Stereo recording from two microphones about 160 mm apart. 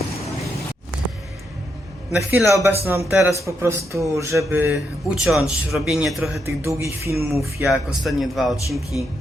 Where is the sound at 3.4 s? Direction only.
20° right (ahead or behind).